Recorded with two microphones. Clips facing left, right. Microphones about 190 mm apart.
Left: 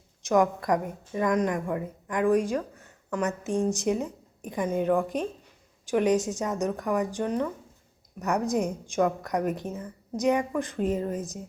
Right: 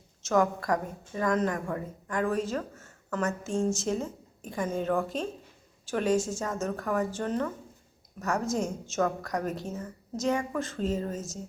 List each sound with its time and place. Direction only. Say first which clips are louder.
0.2 s a woman's voice: left 2 dB; 15° left (ahead or behind)